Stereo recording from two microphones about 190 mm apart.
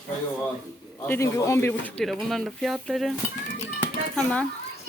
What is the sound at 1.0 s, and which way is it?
Speech, 15° left (ahead or behind).